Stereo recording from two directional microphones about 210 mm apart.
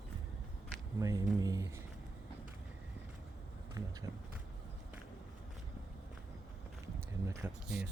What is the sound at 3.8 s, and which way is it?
Speech, 15° right (ahead or behind).